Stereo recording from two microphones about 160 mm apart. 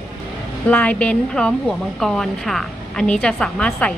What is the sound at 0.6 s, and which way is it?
A woman's voice, 10° left (ahead or behind).